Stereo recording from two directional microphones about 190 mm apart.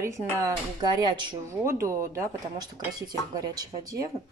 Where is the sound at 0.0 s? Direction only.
15° right (ahead or behind).